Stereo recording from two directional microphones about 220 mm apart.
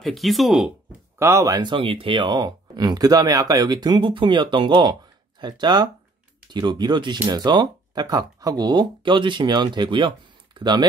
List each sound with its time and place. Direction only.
0.0 s speech: centre (ahead or behind)
1.2 s speech: 15° right (ahead or behind)